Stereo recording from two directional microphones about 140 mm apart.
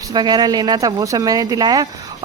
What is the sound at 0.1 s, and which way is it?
Speech, 30° right (ahead or behind).